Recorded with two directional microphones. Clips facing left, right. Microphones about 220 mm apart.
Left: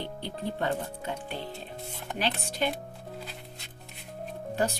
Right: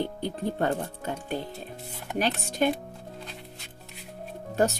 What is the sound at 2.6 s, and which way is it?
Speech, 45° right (ahead or behind).